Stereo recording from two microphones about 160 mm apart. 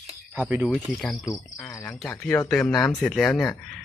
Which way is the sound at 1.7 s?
10° left (ahead or behind).